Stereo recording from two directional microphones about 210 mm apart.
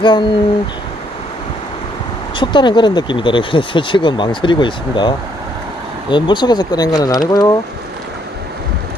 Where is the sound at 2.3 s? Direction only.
25° left (ahead or behind).